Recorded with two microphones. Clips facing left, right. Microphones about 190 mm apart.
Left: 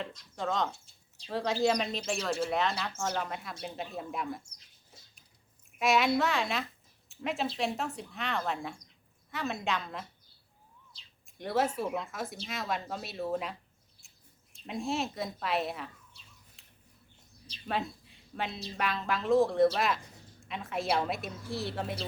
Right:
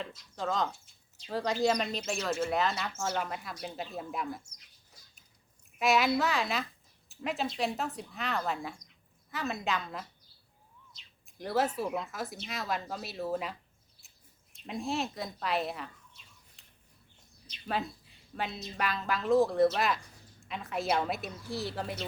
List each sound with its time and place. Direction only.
0.0 s a woman's voice: centre (ahead or behind)
4.4 s a sound: 30° left (ahead or behind)
5.8 s a woman's voice: centre (ahead or behind)
10.9 s bird: 30° left (ahead or behind)
11.3 s a woman's voice: centre (ahead or behind)
14.0 s a sound: centre (ahead or behind)
14.7 s a woman's voice: centre (ahead or behind)
16.6 s a sound: centre (ahead or behind)
17.7 s a woman's voice: centre (ahead or behind)